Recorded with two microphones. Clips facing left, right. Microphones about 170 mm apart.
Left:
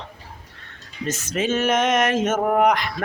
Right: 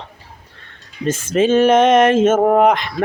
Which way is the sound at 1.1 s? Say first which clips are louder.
Right 9 dB; 30° right (ahead or behind).